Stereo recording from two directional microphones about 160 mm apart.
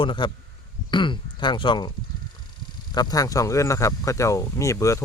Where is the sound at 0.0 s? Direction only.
30° left (ahead or behind).